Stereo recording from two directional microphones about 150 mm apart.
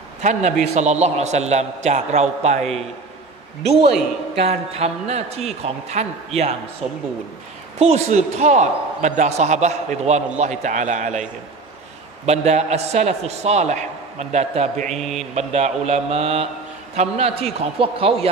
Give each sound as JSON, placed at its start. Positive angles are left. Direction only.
{"t": 0.2, "sound": "a man's voice", "side_deg": -50}
{"t": 4.5, "sound": "a man's voice", "side_deg": -45}
{"t": 7.8, "sound": "a man's voice", "side_deg": -45}
{"t": 12.3, "sound": "a man's voice", "side_deg": -45}
{"t": 14.9, "sound": "mantra", "side_deg": 0}
{"t": 15.3, "sound": "a man's voice", "side_deg": -45}